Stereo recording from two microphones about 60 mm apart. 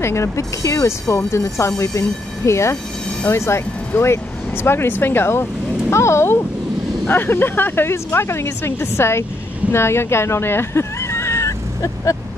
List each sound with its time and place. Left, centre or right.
0.0 s speech: left